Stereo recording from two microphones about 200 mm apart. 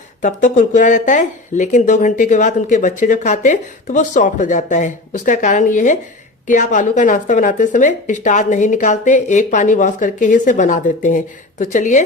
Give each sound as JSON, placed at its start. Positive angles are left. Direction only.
{"t": 0.2, "sound": "speech", "side_deg": 40}